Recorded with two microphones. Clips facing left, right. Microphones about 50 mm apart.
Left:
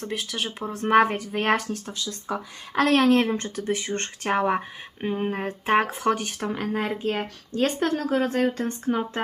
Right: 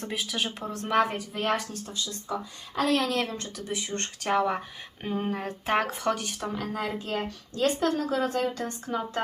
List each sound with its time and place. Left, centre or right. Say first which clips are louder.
0.1 s speech: even; centre
0.6 s speech: left 4 dB; left
0.9 s speech: left 6 dB; left
1.5 s speech: left 4 dB; left
3.0 s a woman's voice: left 9 dB; left
4.0 s a woman's voice: left 1 dB; left
6.1 s a woman's voice: left 3 dB; left